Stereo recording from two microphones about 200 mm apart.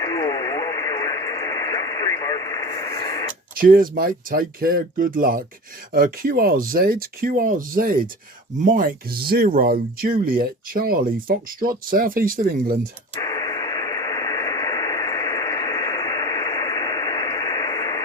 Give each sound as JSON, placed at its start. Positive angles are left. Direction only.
{"t": 0.0, "sound": "radio", "side_deg": 20}
{"t": 3.5, "sound": "speech", "side_deg": -45}
{"t": 13.1, "sound": "radio", "side_deg": 20}